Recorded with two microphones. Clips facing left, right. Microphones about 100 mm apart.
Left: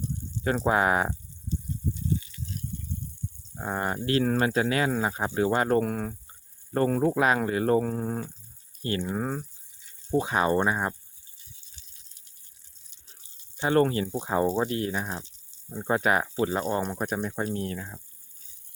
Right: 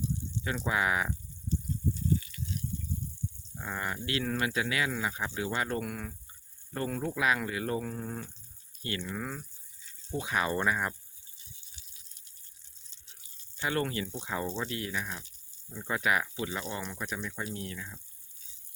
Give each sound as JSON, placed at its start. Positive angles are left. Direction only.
{"t": 0.0, "sound": "a sound", "side_deg": 40}
{"t": 1.5, "sound": "rattle", "side_deg": 20}
{"t": 3.5, "sound": "speech", "side_deg": 40}
{"t": 13.7, "sound": "speech", "side_deg": 35}